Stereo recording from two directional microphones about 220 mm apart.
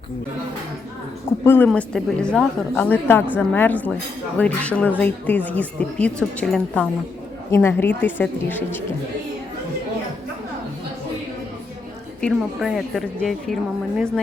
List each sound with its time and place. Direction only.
1.5 s a woman's voice: 5° left (ahead or behind)
12.2 s a woman's voice: centre (ahead or behind)